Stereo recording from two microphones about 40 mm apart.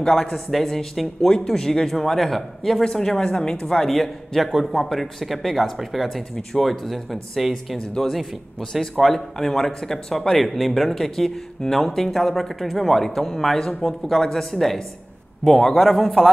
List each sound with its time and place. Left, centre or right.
0.0 s a man's voice: centre
3.8 s a man's voice: centre